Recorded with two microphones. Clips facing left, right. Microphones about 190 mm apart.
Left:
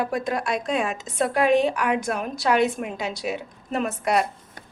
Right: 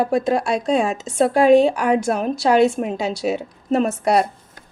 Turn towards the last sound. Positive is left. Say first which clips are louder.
# right 6 dB
turn(degrees=-35)  # may be behind; listen again after turning